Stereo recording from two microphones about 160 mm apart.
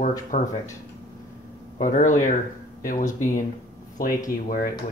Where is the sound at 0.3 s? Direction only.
50° left (ahead or behind).